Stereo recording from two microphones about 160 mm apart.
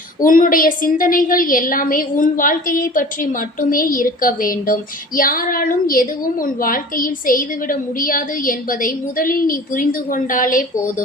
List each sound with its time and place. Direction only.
0.2 s a woman's voice: 55° left (ahead or behind)